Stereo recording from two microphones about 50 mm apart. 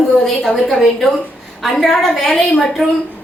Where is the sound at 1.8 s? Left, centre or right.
Centre.